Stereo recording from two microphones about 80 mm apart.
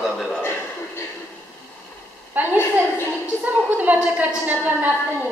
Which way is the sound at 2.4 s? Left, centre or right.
Right.